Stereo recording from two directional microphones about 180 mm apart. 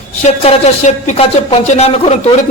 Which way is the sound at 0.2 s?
40° left (ahead or behind).